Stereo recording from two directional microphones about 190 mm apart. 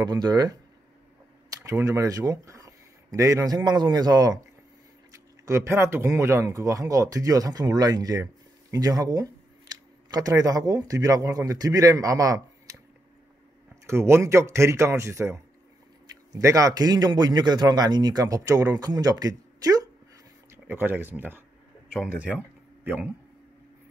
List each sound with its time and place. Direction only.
0.0 s speech: 20° right (ahead or behind)
13.8 s speech: 15° right (ahead or behind)